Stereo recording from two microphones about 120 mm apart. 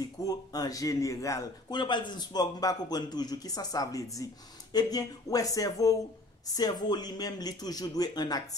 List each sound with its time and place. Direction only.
0.2 s a man's voice: 30° left (ahead or behind)
1.8 s a man's voice: 40° left (ahead or behind)